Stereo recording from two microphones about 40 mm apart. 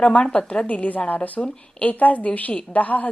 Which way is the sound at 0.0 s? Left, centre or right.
Left.